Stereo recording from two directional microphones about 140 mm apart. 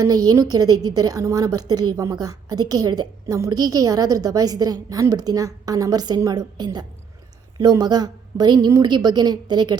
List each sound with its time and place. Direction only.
0.0 s a woman's voice: 25° right (ahead or behind)